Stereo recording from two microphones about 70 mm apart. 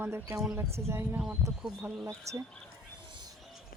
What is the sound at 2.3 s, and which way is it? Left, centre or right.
Speech, right.